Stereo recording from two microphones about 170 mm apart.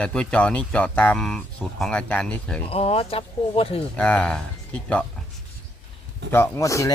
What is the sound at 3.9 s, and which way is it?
Speech, 5° left (ahead or behind).